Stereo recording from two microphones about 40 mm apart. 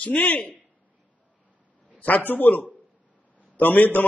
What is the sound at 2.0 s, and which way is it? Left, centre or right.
A man's voice, left.